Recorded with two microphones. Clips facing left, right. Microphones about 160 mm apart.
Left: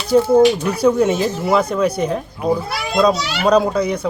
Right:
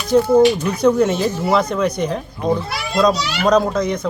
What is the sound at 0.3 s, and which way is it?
Speech, 10° left (ahead or behind).